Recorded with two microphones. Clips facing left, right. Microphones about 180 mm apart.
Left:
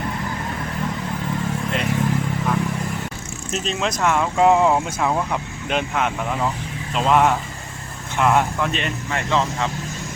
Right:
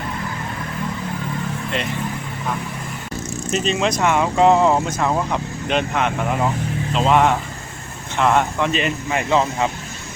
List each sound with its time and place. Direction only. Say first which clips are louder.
3.5 s speech: right 4 dB; centre (ahead or behind)